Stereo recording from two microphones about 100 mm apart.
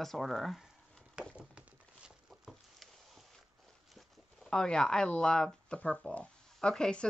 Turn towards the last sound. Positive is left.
turn(degrees=10)  # may be behind; listen again after turning